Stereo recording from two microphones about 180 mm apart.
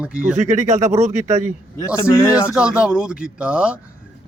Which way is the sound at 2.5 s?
5° right (ahead or behind).